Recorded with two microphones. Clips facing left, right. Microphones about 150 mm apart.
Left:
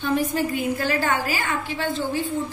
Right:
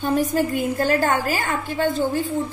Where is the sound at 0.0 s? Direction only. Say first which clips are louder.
Right 3 dB; 40° right (ahead or behind).